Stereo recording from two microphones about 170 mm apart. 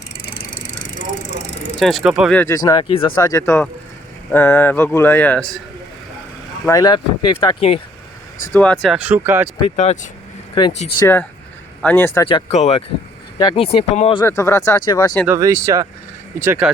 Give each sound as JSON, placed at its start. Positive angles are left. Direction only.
{"t": 0.2, "sound": "vehicle", "side_deg": 60}
{"t": 1.8, "sound": "speech", "side_deg": 0}
{"t": 2.3, "sound": "speech", "side_deg": 10}
{"t": 2.8, "sound": "speech", "side_deg": 35}
{"t": 3.2, "sound": "speech", "side_deg": 20}
{"t": 6.7, "sound": "speech", "side_deg": 20}
{"t": 8.5, "sound": "speech", "side_deg": 10}
{"t": 9.0, "sound": "speech", "side_deg": -10}
{"t": 9.6, "sound": "speech", "side_deg": 35}
{"t": 11.0, "sound": "speech", "side_deg": 10}
{"t": 12.5, "sound": "speech", "side_deg": 40}
{"t": 14.3, "sound": "speech", "side_deg": 15}
{"t": 15.3, "sound": "speech", "side_deg": -20}
{"t": 16.4, "sound": "speech", "side_deg": -10}